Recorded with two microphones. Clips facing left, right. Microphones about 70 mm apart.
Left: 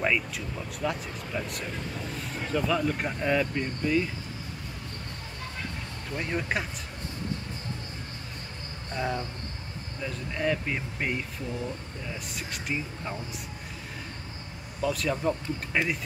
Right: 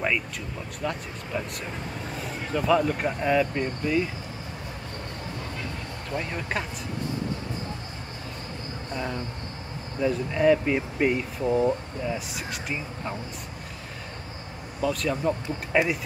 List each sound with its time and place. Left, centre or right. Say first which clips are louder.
0.0 s speech: even; centre
6.1 s speech: even; centre
8.9 s speech: left 1 dB; centre
11.4 s speech: right 15 dB; right
12.4 s speech: right 1 dB; centre
14.8 s speech: right 2 dB; centre